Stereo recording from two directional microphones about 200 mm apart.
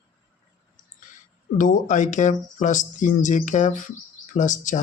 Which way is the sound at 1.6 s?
40° left (ahead or behind).